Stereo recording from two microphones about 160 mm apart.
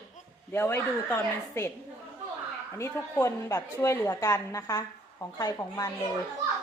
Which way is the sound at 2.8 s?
15° left (ahead or behind).